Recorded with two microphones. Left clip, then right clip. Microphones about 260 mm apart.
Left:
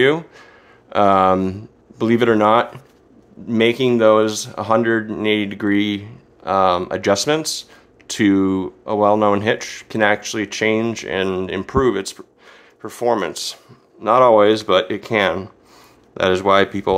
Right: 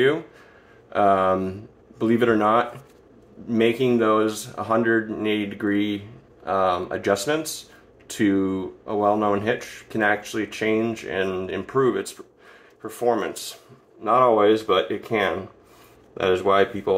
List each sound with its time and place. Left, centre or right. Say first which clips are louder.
0.9 s speech: left 5 dB; left